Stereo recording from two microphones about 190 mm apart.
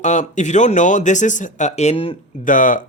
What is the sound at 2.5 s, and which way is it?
Speech, 45° left (ahead or behind).